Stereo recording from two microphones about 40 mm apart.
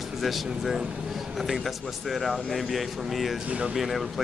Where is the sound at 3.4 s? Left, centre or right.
Right.